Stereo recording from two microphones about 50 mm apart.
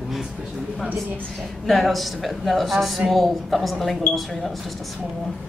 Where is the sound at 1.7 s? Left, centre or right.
Centre.